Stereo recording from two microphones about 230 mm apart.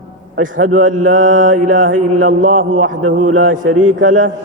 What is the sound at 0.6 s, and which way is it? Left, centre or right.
Mantra, right.